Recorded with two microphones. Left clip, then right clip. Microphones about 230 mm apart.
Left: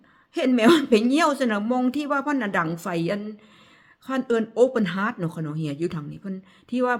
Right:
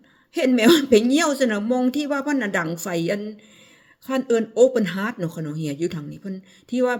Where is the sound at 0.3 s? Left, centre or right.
Centre.